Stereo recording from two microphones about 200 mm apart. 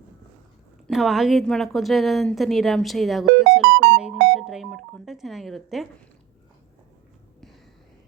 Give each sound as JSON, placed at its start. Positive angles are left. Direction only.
{"t": 0.9, "sound": "a woman's voice", "side_deg": 0}
{"t": 3.6, "sound": "music", "side_deg": -55}
{"t": 4.4, "sound": "telephone dialing", "side_deg": 0}